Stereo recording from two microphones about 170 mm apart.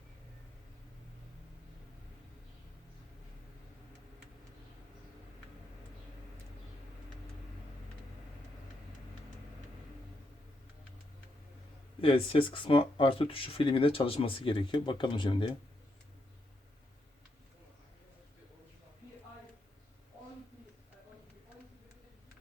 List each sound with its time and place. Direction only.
11.9 s speech: 30° left (ahead or behind)